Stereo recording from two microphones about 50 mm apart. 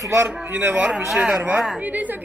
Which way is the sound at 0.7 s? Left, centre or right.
Centre.